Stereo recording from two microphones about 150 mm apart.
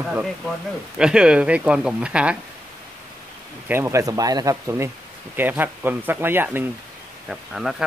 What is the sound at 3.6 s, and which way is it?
Speech, 15° right (ahead or behind).